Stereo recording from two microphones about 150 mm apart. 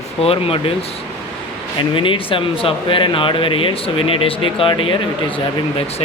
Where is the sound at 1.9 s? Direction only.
35° left (ahead or behind).